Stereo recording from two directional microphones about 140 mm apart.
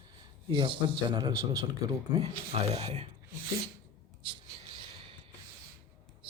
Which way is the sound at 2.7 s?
50° right (ahead or behind).